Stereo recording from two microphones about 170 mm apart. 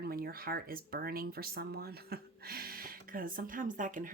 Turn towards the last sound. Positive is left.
turn(degrees=-50)  # may be behind; listen again after turning